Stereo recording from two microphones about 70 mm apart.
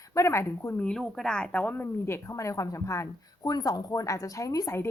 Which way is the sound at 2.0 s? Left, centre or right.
Left.